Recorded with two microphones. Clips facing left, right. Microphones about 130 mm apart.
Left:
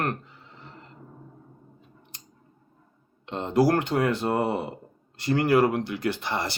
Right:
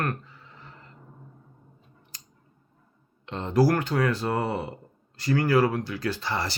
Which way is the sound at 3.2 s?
20° left (ahead or behind).